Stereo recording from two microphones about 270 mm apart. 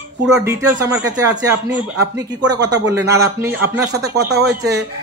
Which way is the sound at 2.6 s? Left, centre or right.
Centre.